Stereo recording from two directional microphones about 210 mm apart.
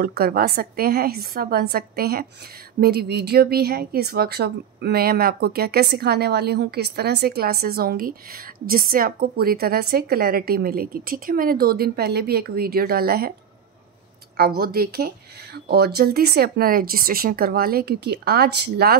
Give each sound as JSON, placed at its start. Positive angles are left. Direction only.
{"t": 0.0, "sound": "a woman's voice", "side_deg": -45}
{"t": 14.3, "sound": "a woman's voice", "side_deg": -45}